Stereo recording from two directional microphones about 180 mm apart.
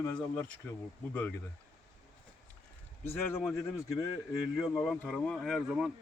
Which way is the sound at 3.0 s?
15° left (ahead or behind).